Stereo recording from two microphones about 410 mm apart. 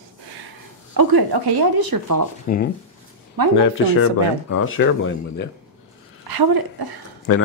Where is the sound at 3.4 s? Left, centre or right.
Right.